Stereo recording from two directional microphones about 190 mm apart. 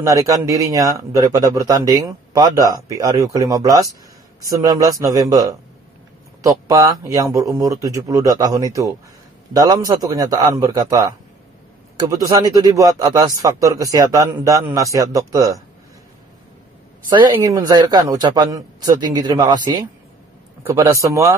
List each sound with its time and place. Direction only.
0.0 s a man's voice: 15° right (ahead or behind)
17.1 s a man's voice: 20° right (ahead or behind)